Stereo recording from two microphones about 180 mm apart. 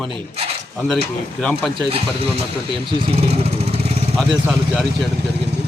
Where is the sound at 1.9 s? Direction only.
30° right (ahead or behind).